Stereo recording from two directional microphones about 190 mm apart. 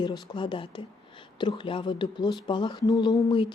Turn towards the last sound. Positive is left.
turn(degrees=25)  # may be behind; listen again after turning